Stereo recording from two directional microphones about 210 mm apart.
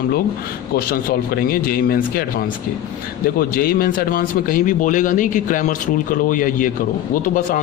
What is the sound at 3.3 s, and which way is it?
Speech, 45° left (ahead or behind).